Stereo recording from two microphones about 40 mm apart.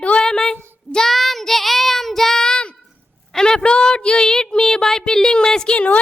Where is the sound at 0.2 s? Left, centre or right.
Centre.